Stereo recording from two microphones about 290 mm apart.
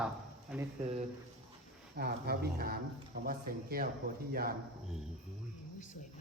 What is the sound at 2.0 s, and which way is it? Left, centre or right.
A man's voice, right.